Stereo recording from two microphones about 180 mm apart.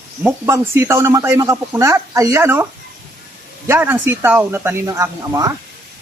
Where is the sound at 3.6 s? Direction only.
15° right (ahead or behind).